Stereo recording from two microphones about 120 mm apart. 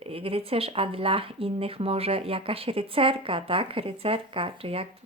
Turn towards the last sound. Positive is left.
turn(degrees=-50)  # may be behind; listen again after turning